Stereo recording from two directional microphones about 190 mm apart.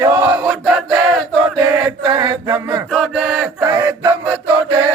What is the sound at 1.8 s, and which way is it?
Male singing, 25° right (ahead or behind).